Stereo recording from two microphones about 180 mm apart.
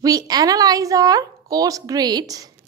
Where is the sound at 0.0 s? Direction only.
20° right (ahead or behind).